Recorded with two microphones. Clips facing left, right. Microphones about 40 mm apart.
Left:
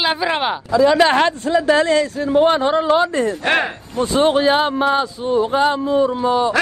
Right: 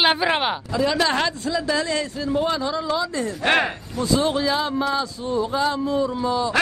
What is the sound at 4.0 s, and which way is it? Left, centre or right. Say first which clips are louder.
A man's voice: left 6 dB; left.